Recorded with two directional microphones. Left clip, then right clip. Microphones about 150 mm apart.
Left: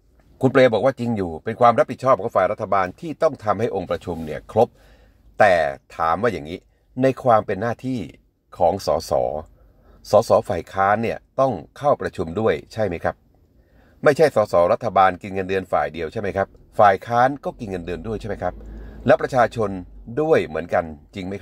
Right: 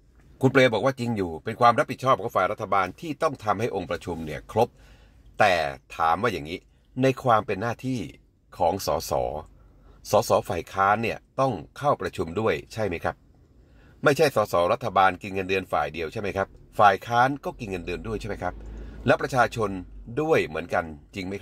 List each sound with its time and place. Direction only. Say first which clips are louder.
0.4 s speech: left 5 dB; 25° left (ahead or behind)